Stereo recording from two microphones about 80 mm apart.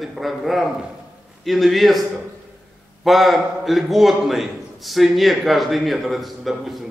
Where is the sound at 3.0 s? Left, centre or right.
Centre.